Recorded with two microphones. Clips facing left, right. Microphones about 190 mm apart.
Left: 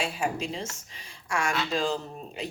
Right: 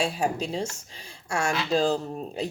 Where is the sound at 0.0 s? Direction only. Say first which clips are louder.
Right 3 dB; 35° right (ahead or behind).